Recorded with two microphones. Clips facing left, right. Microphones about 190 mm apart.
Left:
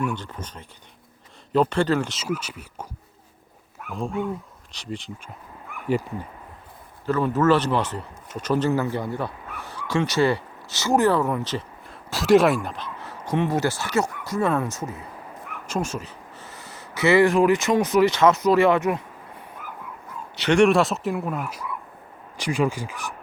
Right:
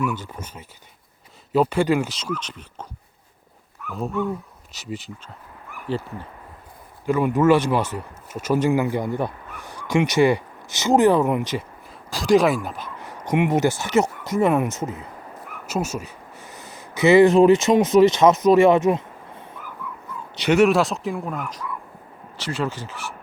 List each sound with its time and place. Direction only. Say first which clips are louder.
0.0 s speech: right 2 dB; 5° right (ahead or behind)
2.1 s speech: left 1 dB; 10° left (ahead or behind)
4.7 s speech: right 1 dB; 5° right (ahead or behind)
7.0 s speech: right 2 dB; 10° right (ahead or behind)
11.9 s speech: left 1 dB; centre (ahead or behind)
13.0 s speech: right 3 dB; 15° right (ahead or behind)
15.6 s speech: right 2 dB; 5° right (ahead or behind)
20.6 s speech: even; centre (ahead or behind)